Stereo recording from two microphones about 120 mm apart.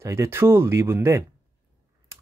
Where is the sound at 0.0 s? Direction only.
20° right (ahead or behind).